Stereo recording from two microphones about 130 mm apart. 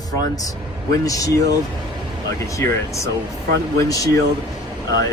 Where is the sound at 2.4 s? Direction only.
25° left (ahead or behind).